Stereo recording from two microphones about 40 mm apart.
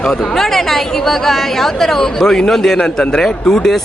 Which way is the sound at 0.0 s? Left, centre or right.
Centre.